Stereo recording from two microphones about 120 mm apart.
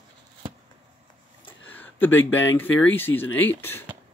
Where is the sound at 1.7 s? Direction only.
15° left (ahead or behind).